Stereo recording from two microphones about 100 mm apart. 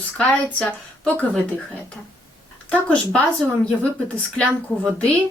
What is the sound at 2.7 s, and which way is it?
Speech, 15° left (ahead or behind).